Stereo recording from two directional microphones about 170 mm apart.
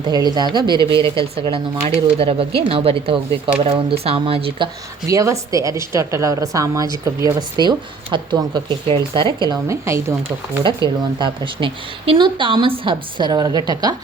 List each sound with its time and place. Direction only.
0.1 s speech: 25° right (ahead or behind)
9.5 s a woman's voice: 15° right (ahead or behind)
10.2 s speech: 30° right (ahead or behind)